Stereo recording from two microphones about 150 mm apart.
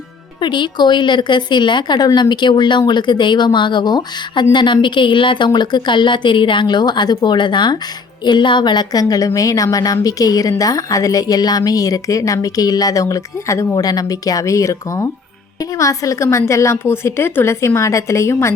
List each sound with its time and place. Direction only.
0.4 s a woman's voice: 30° left (ahead or behind)